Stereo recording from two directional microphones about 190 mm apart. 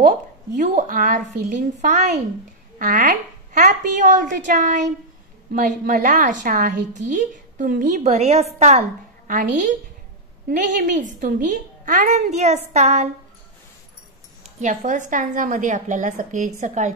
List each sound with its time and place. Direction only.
0.6 s a woman's voice: 40° right (ahead or behind)
14.6 s a woman's voice: 40° right (ahead or behind)